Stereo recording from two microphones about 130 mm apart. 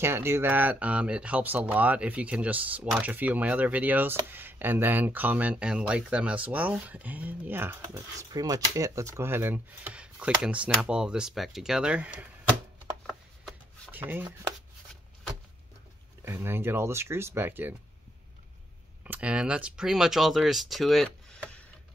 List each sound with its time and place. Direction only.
0.0 s speech: 20° right (ahead or behind)
7.9 s speech: 25° right (ahead or behind); by 12.3 s 10° right (ahead or behind)
13.9 s speech: 15° right (ahead or behind)
16.3 s speech: 15° right (ahead or behind)
19.0 s speech: 10° right (ahead or behind); by 21.6 s 10° left (ahead or behind)